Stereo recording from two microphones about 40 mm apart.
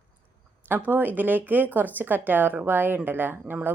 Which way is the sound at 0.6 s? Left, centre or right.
Right.